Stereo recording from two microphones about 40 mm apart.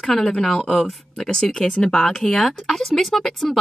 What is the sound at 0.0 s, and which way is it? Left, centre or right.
Speech, centre.